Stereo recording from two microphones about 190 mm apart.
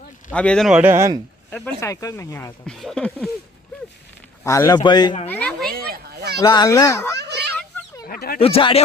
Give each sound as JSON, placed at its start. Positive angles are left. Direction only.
{"t": 0.3, "sound": "a man's voice", "side_deg": 5}
{"t": 1.5, "sound": "speech", "side_deg": 5}
{"t": 2.6, "sound": "a man's voice", "side_deg": 0}
{"t": 4.4, "sound": "speech", "side_deg": 15}
{"t": 5.3, "sound": "speech", "side_deg": 5}
{"t": 5.7, "sound": "children playing", "side_deg": -55}
{"t": 6.4, "sound": "speech", "side_deg": 20}
{"t": 8.0, "sound": "a sound", "side_deg": 50}
{"t": 8.4, "sound": "speech", "side_deg": 30}